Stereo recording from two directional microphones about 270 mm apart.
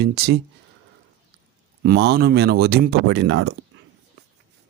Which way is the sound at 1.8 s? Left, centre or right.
Right.